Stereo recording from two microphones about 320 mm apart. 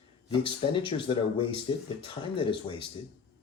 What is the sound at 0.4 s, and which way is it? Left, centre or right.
Speech, centre.